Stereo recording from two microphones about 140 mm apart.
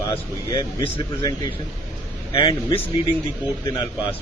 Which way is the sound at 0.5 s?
35° left (ahead or behind).